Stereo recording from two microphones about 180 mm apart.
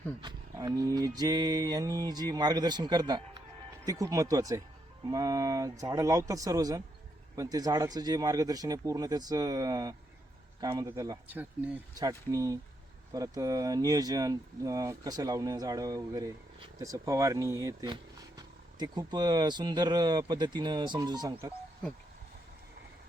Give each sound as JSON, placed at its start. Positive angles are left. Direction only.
{"t": 0.2, "sound": "speech", "side_deg": -20}